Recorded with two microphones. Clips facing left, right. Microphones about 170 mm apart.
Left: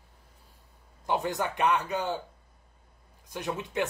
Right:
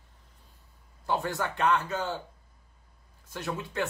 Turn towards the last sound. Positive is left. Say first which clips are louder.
# left 2 dB
turn(degrees=15)  # may be behind; listen again after turning